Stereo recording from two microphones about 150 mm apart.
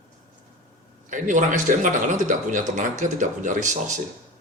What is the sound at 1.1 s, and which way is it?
Speech, 60° right (ahead or behind).